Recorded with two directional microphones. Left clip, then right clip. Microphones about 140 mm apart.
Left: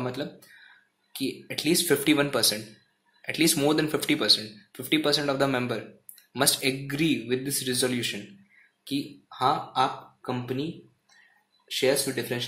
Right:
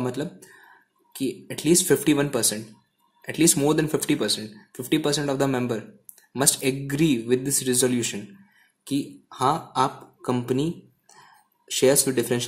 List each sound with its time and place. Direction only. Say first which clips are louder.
0.0 s speech: right 3 dB; 50° right (ahead or behind)
11.7 s speech: right 5 dB; 60° right (ahead or behind)